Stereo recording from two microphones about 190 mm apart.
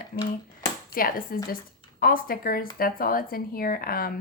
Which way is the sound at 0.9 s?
50° left (ahead or behind).